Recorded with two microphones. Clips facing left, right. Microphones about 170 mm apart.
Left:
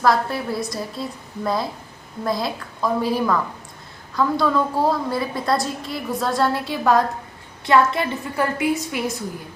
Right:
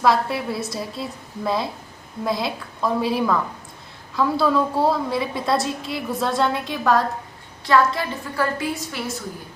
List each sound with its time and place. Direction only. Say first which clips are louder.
0.0 s a woman's voice: even; centre (ahead or behind)
7.7 s a woman's voice: left 1 dB; 20° left (ahead or behind)